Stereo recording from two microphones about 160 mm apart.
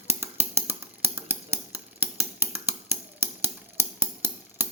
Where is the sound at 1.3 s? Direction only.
15° right (ahead or behind).